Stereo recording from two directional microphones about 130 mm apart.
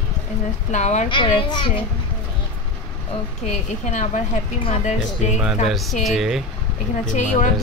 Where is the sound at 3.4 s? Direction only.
65° left (ahead or behind).